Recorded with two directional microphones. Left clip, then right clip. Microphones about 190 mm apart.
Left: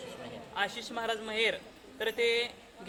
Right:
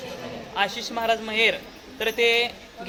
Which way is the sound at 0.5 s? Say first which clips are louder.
Right 8 dB; centre (ahead or behind).